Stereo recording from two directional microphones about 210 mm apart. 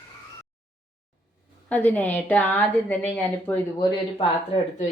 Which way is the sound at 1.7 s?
5° left (ahead or behind).